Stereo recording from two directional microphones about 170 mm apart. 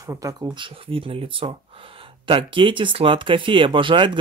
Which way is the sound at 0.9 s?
30° right (ahead or behind).